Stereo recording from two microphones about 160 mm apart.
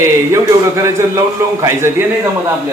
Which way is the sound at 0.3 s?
20° right (ahead or behind).